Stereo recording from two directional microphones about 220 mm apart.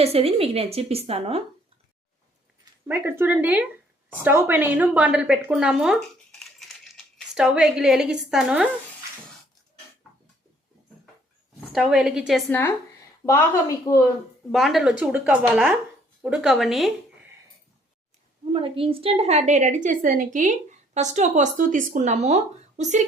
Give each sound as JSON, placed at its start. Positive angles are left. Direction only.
{"t": 0.0, "sound": "a woman's voice", "side_deg": -25}
{"t": 2.8, "sound": "a woman's voice", "side_deg": -10}
{"t": 6.4, "sound": "crumpling", "side_deg": 0}
{"t": 11.7, "sound": "speech", "side_deg": 0}
{"t": 12.5, "sound": "a woman's voice", "side_deg": 10}
{"t": 14.5, "sound": "speech", "side_deg": 0}
{"t": 18.5, "sound": "a woman's voice", "side_deg": -25}